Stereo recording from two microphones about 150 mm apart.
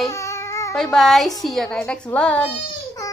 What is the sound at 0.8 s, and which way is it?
A woman's voice, 5° left (ahead or behind).